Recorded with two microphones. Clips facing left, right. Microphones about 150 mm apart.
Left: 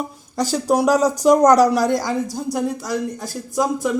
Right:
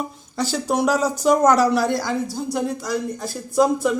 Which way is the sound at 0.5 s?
10° left (ahead or behind).